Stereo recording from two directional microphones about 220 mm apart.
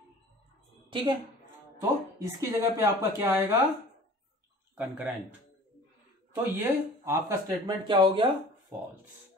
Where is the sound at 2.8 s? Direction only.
10° right (ahead or behind).